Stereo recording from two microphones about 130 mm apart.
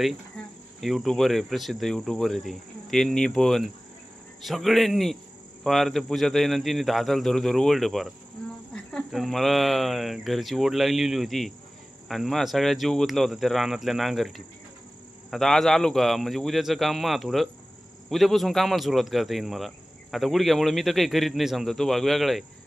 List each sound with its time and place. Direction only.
0.0 s speech: centre (ahead or behind)